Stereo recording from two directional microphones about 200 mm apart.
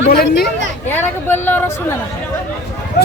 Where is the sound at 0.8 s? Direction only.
10° left (ahead or behind).